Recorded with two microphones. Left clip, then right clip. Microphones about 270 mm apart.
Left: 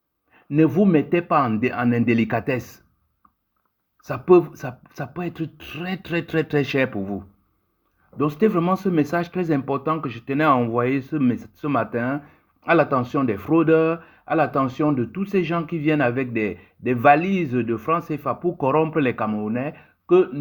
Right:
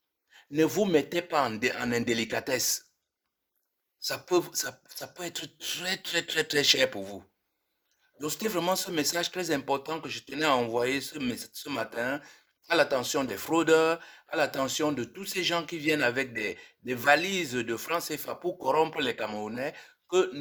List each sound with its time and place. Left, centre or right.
0.3 s speech: right
4.0 s speech: right
5.8 s speech: right
8.3 s speech: right